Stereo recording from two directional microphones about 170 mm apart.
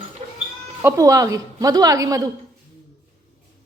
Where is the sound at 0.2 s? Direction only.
40° right (ahead or behind).